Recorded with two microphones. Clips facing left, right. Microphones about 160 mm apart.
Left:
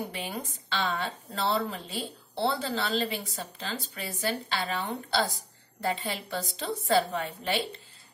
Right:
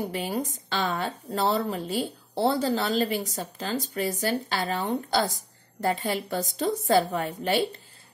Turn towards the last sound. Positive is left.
turn(degrees=-45)  # may be behind; listen again after turning